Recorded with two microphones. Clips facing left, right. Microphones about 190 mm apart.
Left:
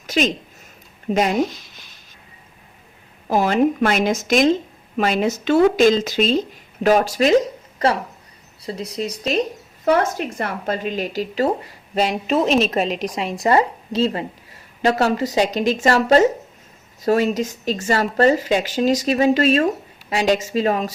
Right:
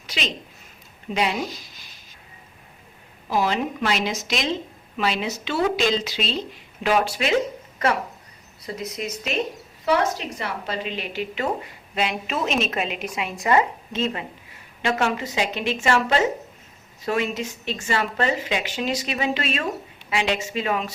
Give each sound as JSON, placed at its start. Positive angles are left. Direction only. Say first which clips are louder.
{"t": 0.1, "sound": "a woman's voice", "louder": "left 10 dB", "side_deg": 45}
{"t": 3.2, "sound": "a woman's voice", "louder": "left 6 dB", "side_deg": 50}
{"t": 8.6, "sound": "a woman's voice", "louder": "left 4 dB", "side_deg": 30}
{"t": 9.8, "sound": "a woman's voice", "louder": "left 4 dB", "side_deg": 50}